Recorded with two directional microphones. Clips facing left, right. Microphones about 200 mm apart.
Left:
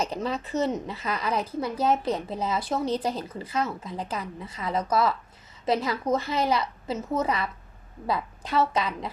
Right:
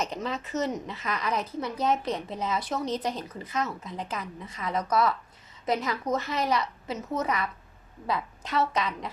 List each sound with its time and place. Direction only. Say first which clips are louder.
0.0 s a woman's voice: left 3 dB; 35° left (ahead or behind)